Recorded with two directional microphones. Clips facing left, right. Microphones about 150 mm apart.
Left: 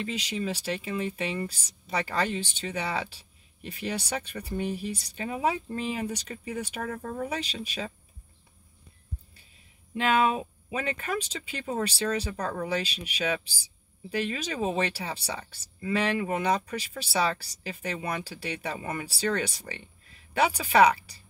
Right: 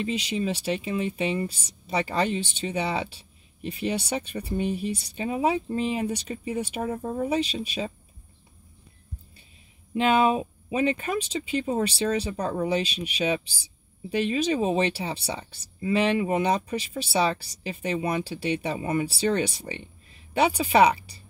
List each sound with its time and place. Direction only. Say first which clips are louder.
0.0 s speech: right 4 dB; 25° right (ahead or behind)
9.9 s speech: right 3 dB; 25° right (ahead or behind)